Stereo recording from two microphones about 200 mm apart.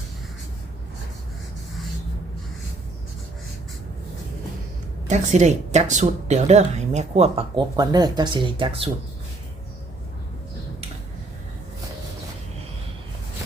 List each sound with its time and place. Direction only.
5.0 s a woman's voice: 35° right (ahead or behind)